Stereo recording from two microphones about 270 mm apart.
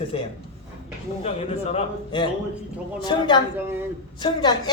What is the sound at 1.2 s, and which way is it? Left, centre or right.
A man's voice, left.